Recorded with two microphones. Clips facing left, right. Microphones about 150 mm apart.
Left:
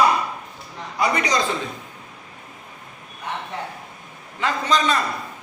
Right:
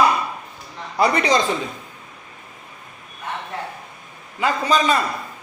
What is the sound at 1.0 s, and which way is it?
Speech, 30° right (ahead or behind).